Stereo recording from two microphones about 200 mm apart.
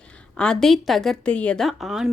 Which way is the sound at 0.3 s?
5° left (ahead or behind).